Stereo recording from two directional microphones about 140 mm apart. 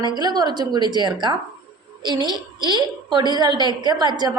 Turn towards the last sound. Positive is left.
turn(degrees=-30)  # may be behind; listen again after turning